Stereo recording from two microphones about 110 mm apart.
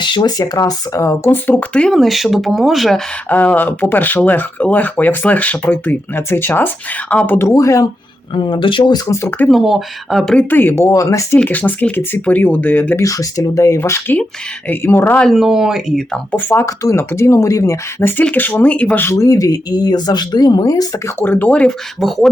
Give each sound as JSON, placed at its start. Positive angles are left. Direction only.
{"t": 0.0, "sound": "speech", "side_deg": 40}
{"t": 3.2, "sound": "speech", "side_deg": 15}
{"t": 7.3, "sound": "speech", "side_deg": 25}
{"t": 8.4, "sound": "speech", "side_deg": 45}
{"t": 9.5, "sound": "speech", "side_deg": 0}
{"t": 10.3, "sound": "speech", "side_deg": 15}
{"t": 11.3, "sound": "speech", "side_deg": 15}
{"t": 13.0, "sound": "speech", "side_deg": 30}
{"t": 15.2, "sound": "speech", "side_deg": 0}
{"t": 16.3, "sound": "speech", "side_deg": 20}
{"t": 19.1, "sound": "speech", "side_deg": 30}
{"t": 21.2, "sound": "speech", "side_deg": 15}